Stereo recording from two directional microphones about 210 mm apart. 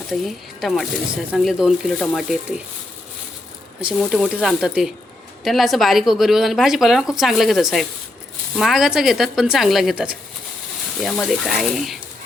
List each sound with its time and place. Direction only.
0.1 s speech: centre (ahead or behind)
3.8 s speech: 5° right (ahead or behind)